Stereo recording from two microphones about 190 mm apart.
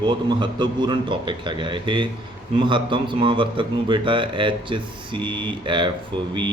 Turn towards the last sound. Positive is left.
turn(degrees=-25)  # may be behind; listen again after turning